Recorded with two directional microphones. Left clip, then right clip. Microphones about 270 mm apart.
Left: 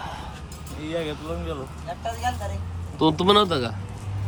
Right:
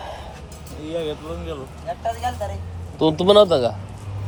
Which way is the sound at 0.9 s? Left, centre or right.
Left.